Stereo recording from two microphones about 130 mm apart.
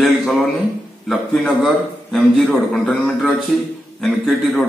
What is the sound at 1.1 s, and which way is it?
A man's voice, centre (ahead or behind).